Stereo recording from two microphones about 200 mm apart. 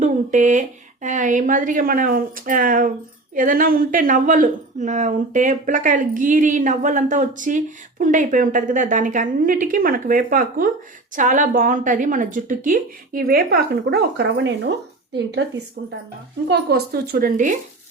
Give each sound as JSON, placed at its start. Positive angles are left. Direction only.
{"t": 0.0, "sound": "a woman's voice", "side_deg": -40}
{"t": 16.5, "sound": "speech", "side_deg": -55}